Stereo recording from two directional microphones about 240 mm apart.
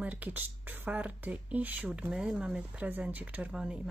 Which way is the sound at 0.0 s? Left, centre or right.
Centre.